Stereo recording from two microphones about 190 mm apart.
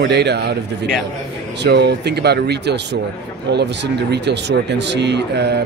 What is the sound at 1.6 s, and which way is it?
Speech, 65° right (ahead or behind).